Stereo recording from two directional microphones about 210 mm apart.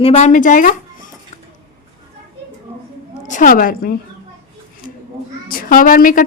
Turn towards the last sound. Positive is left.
turn(degrees=40)  # may be behind; listen again after turning